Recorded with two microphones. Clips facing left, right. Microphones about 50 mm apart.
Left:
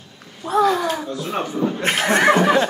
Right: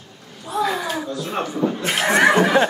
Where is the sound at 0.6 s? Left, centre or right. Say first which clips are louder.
Left 4 dB; centre.